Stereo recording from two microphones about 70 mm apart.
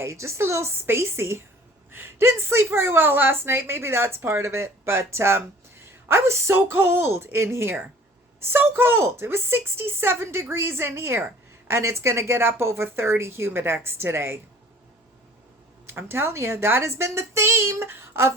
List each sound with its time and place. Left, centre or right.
0.0 s a woman's voice: right
15.9 s a woman's voice: right